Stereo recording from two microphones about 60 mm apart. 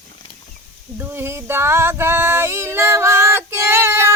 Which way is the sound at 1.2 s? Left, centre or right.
Right.